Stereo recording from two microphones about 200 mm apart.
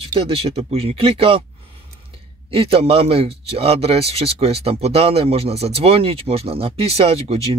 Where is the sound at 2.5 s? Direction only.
30° right (ahead or behind).